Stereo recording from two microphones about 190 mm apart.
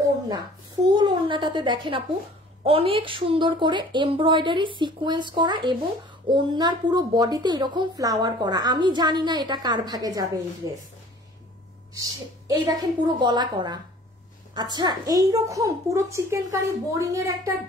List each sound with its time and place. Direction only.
0.9 s a woman's voice: 25° right (ahead or behind)
11.9 s a woman's voice: 20° right (ahead or behind)